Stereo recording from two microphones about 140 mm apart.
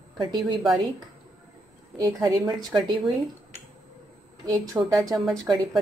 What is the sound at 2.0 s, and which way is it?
Speech, 25° right (ahead or behind).